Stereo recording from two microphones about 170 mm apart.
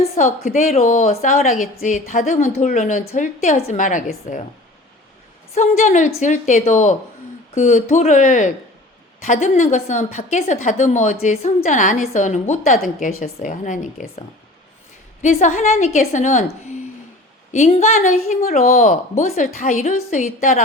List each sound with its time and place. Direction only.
0.4 s a woman's voice: 45° left (ahead or behind)
5.5 s a woman's voice: 45° left (ahead or behind)